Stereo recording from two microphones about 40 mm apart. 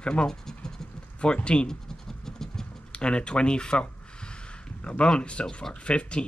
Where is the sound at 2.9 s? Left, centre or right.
Left.